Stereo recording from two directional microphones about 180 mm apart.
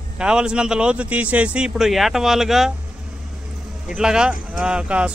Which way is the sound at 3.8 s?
5° right (ahead or behind).